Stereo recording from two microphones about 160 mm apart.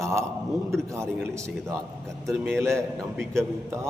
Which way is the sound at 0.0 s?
15° right (ahead or behind).